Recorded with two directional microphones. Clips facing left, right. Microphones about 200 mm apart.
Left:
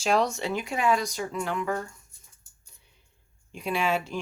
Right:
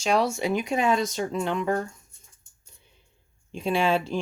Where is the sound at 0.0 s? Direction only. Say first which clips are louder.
Right 1 dB; centre (ahead or behind); by 1.7 s 25° right (ahead or behind).